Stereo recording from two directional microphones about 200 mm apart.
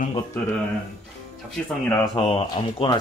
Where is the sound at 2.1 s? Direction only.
25° left (ahead or behind).